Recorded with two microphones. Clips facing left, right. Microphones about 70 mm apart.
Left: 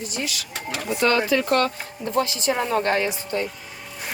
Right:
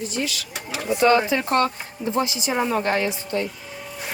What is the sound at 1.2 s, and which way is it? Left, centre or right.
Speech, right.